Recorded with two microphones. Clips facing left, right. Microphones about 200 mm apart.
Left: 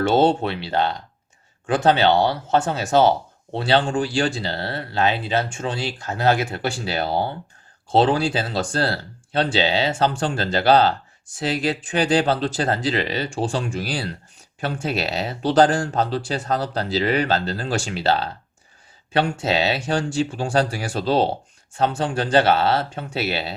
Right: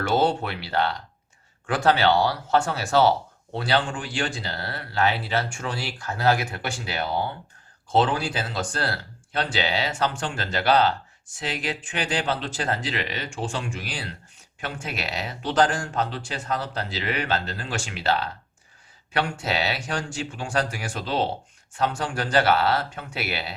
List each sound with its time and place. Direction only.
0.0 s speech: 25° left (ahead or behind)